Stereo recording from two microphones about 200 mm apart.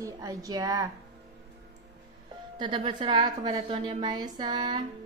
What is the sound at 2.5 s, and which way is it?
Speech, 25° right (ahead or behind).